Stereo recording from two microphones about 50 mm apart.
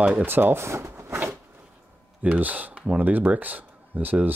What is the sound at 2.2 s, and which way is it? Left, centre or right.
Speech, right.